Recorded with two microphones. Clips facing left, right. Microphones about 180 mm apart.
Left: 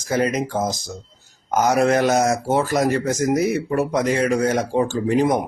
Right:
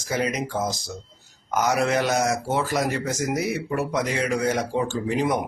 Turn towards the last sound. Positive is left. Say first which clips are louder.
# left 5 dB
turn(degrees=45)  # may be behind; listen again after turning